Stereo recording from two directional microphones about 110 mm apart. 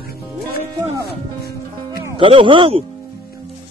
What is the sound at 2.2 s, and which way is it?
Speech, 50° right (ahead or behind).